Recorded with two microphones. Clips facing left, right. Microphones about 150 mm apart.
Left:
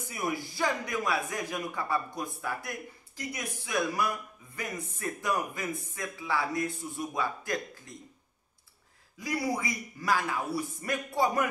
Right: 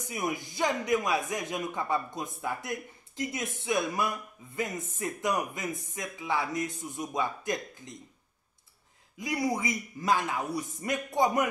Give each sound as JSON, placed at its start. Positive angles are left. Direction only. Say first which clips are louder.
{"t": 0.0, "sound": "speech", "louder": "even", "side_deg": -20}
{"t": 9.2, "sound": "speech", "louder": "right 2 dB", "side_deg": -20}